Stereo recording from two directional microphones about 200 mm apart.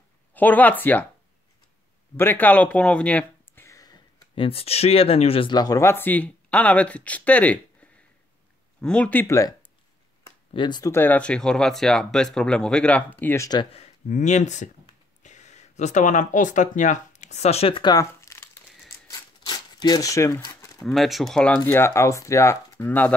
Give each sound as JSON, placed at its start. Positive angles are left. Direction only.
{"t": 0.3, "sound": "speech", "side_deg": 10}
{"t": 2.1, "sound": "speech", "side_deg": 10}
{"t": 14.0, "sound": "speech", "side_deg": 35}
{"t": 19.4, "sound": "a sound", "side_deg": 20}
{"t": 20.8, "sound": "speech", "side_deg": 0}